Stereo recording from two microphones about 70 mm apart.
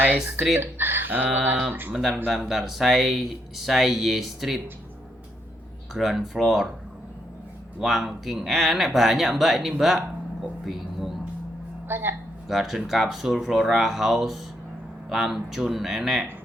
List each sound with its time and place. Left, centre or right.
0.6 s a sound: right
1.9 s speech: centre
5.9 s speech: centre
7.8 s speech: centre
10.7 s a sound: centre
11.9 s a woman's voice: right
12.5 s speech: centre